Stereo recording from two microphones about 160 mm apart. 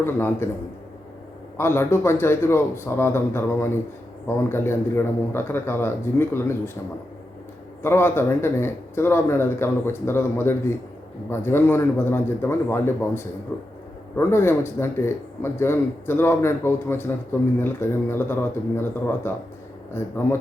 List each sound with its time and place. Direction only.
0.0 s speech: 15° left (ahead or behind)
1.5 s speech: 15° left (ahead or behind)
7.8 s speech: 15° left (ahead or behind)